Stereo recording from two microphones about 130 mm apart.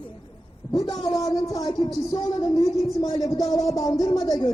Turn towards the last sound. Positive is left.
turn(degrees=30)  # may be behind; listen again after turning